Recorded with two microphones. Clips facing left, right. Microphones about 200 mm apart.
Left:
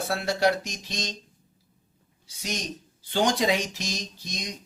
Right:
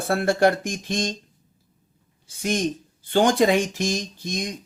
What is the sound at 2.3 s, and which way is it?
Speech, 50° right (ahead or behind).